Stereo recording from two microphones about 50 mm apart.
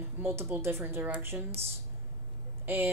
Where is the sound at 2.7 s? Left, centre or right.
Right.